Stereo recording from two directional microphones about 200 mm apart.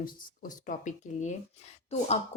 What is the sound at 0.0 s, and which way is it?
Speech, 40° left (ahead or behind).